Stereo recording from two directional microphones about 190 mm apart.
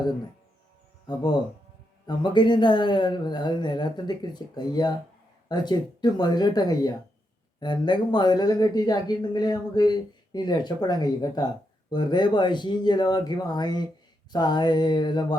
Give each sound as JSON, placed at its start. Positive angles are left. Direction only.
{"t": 2.0, "sound": "speech", "side_deg": 25}